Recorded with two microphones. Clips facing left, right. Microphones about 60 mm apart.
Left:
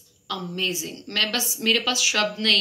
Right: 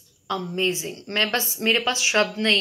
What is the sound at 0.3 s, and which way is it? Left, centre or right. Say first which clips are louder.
A woman's voice: right 4 dB; right.